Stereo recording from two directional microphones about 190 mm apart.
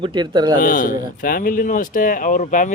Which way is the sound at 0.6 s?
45° left (ahead or behind).